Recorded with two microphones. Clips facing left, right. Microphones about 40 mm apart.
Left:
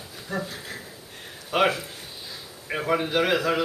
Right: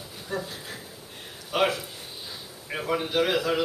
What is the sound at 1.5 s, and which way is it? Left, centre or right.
A man's voice, centre.